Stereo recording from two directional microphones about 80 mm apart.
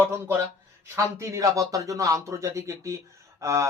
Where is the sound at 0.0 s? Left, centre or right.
Right.